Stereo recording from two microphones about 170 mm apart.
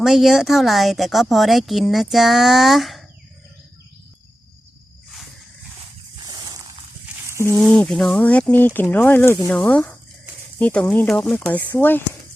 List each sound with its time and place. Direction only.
0.0 s a woman's voice: centre (ahead or behind)
6.2 s a sound: 20° right (ahead or behind)
7.6 s speech: 5° left (ahead or behind)